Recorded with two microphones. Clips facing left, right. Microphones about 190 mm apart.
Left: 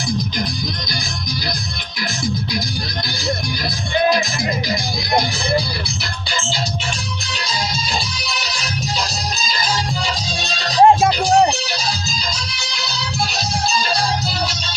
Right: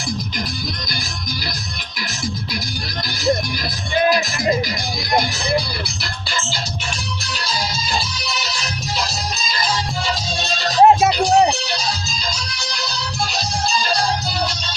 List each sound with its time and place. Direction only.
10.8 s music: 5° right (ahead or behind)